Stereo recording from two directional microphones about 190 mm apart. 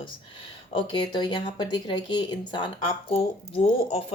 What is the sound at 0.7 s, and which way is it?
Speech, 25° left (ahead or behind).